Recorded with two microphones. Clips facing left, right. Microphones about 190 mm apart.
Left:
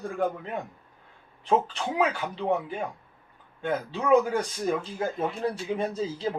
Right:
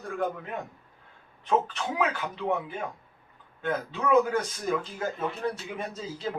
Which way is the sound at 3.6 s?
30° left (ahead or behind).